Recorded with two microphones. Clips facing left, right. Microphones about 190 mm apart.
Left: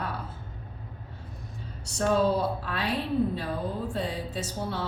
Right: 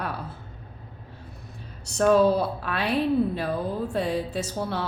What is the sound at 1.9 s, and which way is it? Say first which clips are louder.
A woman's voice: right 5 dB; 70° right (ahead or behind).